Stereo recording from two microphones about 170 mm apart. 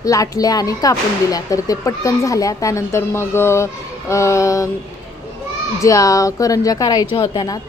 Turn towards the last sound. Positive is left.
turn(degrees=25)  # may be behind; listen again after turning